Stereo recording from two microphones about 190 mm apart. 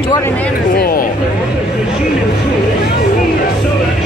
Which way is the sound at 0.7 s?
50° left (ahead or behind).